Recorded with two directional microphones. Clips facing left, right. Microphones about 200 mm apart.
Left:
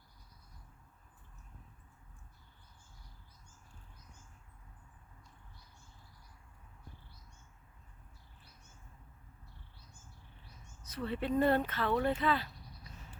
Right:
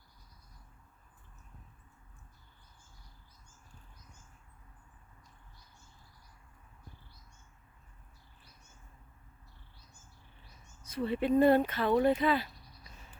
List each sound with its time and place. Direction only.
10.8 s speech: 10° right (ahead or behind)